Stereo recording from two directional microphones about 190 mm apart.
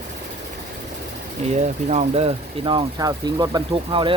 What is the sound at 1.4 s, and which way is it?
Speech, 35° right (ahead or behind).